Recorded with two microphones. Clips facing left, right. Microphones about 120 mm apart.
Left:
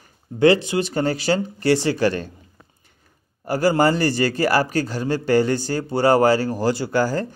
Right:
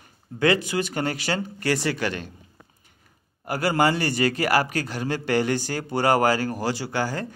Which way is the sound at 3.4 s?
35° left (ahead or behind).